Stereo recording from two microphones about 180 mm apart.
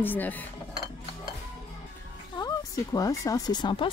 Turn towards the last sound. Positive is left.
turn(degrees=25)  # may be behind; listen again after turning